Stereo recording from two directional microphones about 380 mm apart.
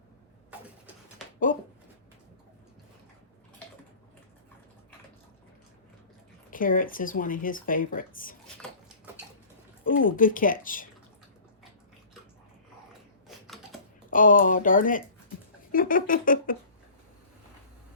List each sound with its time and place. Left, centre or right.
6.5 s speech: left
9.8 s speech: left
14.1 s speech: left